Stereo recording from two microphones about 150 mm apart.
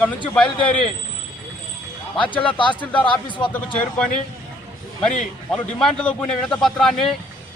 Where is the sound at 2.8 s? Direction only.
10° left (ahead or behind).